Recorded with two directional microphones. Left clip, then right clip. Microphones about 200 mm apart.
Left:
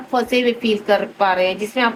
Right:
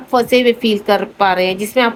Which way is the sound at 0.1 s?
45° right (ahead or behind).